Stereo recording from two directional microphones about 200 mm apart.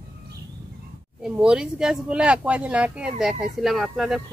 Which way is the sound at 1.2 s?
5° right (ahead or behind).